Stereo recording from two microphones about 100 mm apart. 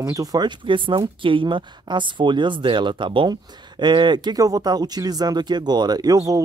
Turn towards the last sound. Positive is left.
turn(degrees=-35)  # may be behind; listen again after turning